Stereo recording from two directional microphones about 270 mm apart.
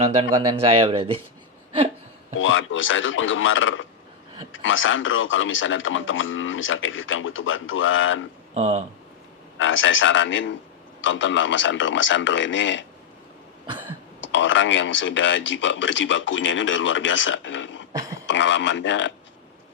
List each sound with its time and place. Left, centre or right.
0.0 s speech: right
2.4 s speech: left
8.5 s speech: right
9.6 s speech: left
14.2 s speech: left